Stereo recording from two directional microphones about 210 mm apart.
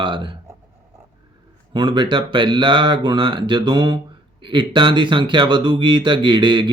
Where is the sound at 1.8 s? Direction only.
20° right (ahead or behind).